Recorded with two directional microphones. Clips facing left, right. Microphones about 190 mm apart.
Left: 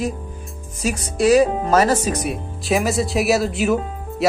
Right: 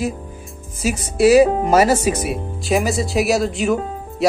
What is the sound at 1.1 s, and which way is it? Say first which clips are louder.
Speech: right 3 dB; 5° right (ahead or behind).